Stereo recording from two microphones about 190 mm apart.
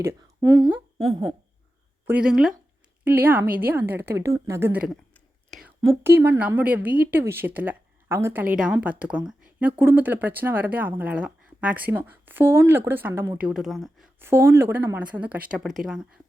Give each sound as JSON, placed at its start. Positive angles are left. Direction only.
{"t": 0.0, "sound": "speech", "side_deg": -20}
{"t": 2.0, "sound": "speech", "side_deg": -5}
{"t": 5.1, "sound": "whispering", "side_deg": 0}
{"t": 5.8, "sound": "speech", "side_deg": -15}
{"t": 13.5, "sound": "speech", "side_deg": 0}
{"t": 14.2, "sound": "speech", "side_deg": -10}